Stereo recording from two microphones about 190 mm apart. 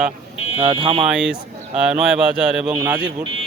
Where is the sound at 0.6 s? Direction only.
30° right (ahead or behind).